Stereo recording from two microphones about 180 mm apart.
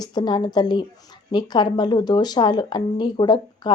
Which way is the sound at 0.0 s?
20° left (ahead or behind).